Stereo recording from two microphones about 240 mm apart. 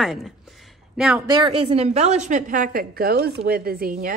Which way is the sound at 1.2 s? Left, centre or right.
Centre.